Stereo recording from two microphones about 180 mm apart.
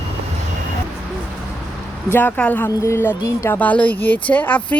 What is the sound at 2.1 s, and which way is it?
A woman's voice, 10° left (ahead or behind).